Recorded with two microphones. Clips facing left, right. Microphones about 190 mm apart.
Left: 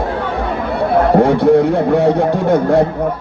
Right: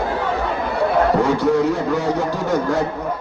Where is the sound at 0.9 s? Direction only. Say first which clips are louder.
Left 6 dB; 60° left (ahead or behind).